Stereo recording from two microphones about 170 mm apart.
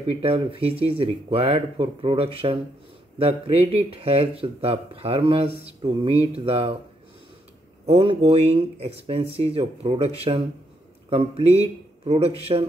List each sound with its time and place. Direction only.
0.1 s speech: 35° right (ahead or behind)
7.8 s speech: 35° right (ahead or behind)